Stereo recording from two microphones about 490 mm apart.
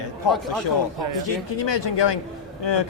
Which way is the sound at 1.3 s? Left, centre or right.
Left.